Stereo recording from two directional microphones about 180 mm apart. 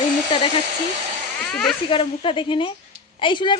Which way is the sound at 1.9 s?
30° left (ahead or behind).